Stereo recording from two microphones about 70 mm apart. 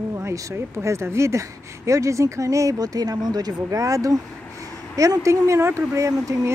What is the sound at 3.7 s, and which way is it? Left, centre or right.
Speech, right.